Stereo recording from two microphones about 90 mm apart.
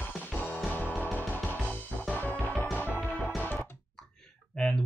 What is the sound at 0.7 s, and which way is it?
Music, 20° left (ahead or behind).